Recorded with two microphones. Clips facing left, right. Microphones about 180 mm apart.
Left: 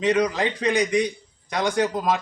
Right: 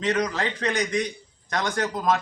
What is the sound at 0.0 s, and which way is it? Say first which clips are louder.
Speech: left 4 dB; 10° left (ahead or behind).